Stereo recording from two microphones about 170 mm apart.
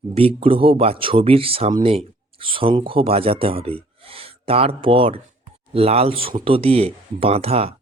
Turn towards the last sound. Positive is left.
turn(degrees=-35)  # may be behind; listen again after turning